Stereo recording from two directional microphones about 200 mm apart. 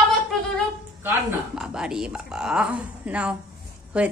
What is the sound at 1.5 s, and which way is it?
A woman's voice, 5° right (ahead or behind).